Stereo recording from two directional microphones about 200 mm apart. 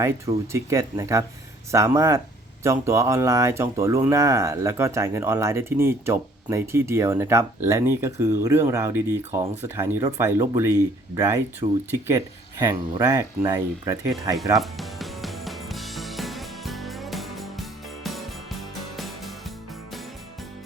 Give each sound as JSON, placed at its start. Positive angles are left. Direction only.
{"t": 0.0, "sound": "speech", "side_deg": -15}
{"t": 14.5, "sound": "music", "side_deg": 0}